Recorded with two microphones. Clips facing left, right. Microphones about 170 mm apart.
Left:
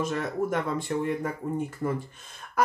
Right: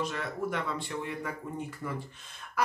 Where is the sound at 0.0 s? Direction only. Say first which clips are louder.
Left 5 dB; 45° left (ahead or behind).